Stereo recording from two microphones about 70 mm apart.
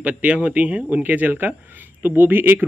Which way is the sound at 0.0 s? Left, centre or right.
Right.